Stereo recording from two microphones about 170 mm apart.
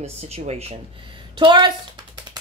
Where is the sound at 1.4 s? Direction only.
30° right (ahead or behind).